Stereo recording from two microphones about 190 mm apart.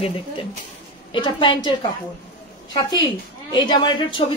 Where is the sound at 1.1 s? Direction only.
25° left (ahead or behind).